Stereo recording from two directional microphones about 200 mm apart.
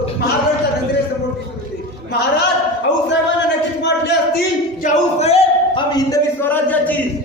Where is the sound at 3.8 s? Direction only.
60° left (ahead or behind).